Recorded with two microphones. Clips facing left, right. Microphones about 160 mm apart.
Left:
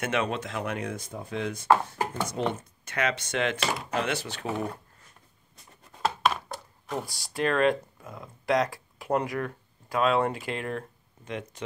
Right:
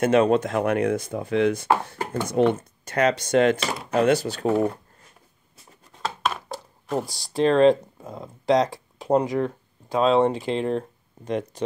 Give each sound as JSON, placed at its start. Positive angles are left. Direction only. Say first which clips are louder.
{"t": 0.0, "sound": "speech", "louder": "right 11 dB", "side_deg": -35}
{"t": 2.4, "sound": "speech", "louder": "right 10 dB", "side_deg": -55}
{"t": 2.8, "sound": "speech", "louder": "right 7 dB", "side_deg": -40}
{"t": 5.9, "sound": "chopping", "louder": "left 1 dB", "side_deg": 0}
{"t": 7.3, "sound": "speech", "louder": "right 7 dB", "side_deg": -30}